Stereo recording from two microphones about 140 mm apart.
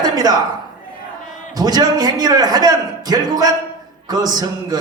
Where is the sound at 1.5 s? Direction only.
30° right (ahead or behind).